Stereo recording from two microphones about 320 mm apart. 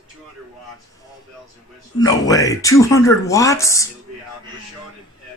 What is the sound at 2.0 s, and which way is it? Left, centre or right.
Speech, centre.